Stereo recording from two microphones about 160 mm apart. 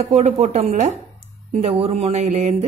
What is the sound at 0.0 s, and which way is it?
Speech, 40° right (ahead or behind).